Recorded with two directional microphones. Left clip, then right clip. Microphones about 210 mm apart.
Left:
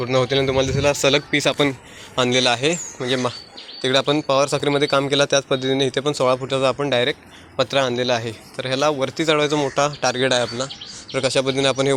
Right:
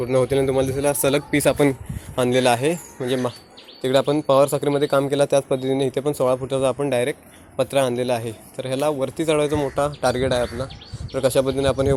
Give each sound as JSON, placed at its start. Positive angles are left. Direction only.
{"t": 0.0, "sound": "speech", "side_deg": -15}